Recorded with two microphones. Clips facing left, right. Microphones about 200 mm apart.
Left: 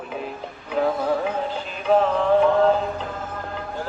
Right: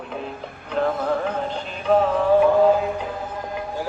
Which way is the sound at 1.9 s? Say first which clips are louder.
Right 1 dB; centre (ahead or behind).